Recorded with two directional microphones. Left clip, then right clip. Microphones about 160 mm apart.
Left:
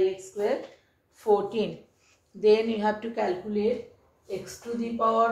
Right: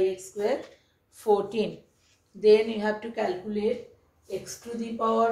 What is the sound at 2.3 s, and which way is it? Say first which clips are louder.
Speech: right 2 dB; 15° left (ahead or behind).